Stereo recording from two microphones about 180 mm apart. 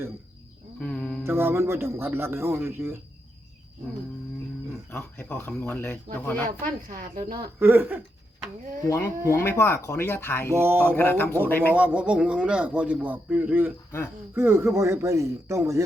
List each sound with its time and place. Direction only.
0.8 s speech: 5° left (ahead or behind)
1.2 s a man's voice: 15° right (ahead or behind)
4.9 s speech: 10° left (ahead or behind)
6.8 s a woman's voice: 50° right (ahead or behind)
7.6 s a man's voice: 10° right (ahead or behind)
8.9 s speech: 15° left (ahead or behind)
10.5 s a man's voice: 15° right (ahead or behind)
10.9 s speech: 10° left (ahead or behind)
11.7 s a man's voice: 10° right (ahead or behind)